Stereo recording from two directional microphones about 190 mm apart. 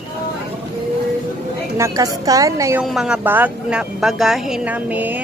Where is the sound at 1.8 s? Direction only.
20° right (ahead or behind).